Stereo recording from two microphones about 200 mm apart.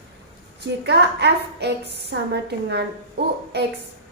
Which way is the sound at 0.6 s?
55° right (ahead or behind).